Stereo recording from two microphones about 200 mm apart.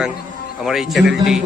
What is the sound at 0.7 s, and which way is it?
Speech, centre (ahead or behind).